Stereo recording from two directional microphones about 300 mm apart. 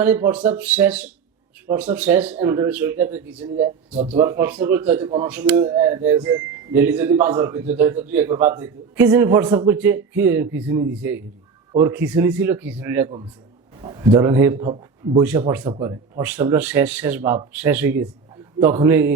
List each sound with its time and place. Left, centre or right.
0.0 s speech: centre
3.6 s speech: right
4.1 s a man's voice: centre
15.2 s speech: centre